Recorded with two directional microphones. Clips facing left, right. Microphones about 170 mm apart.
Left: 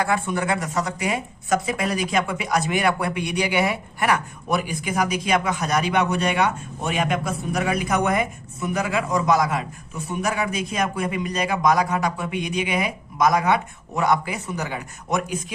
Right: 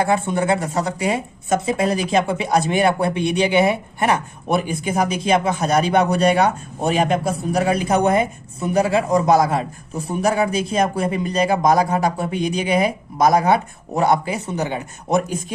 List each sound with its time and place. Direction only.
0.0 s speech: 25° right (ahead or behind)